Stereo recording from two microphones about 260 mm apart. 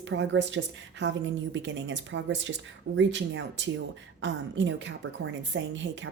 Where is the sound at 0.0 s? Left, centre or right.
Right.